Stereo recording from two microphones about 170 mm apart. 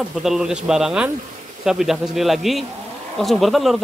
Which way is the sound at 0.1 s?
Centre (ahead or behind).